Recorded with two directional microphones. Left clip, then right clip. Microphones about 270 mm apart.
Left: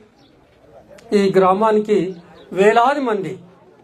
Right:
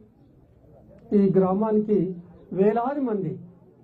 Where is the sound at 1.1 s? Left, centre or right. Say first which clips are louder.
Left 8 dB; centre.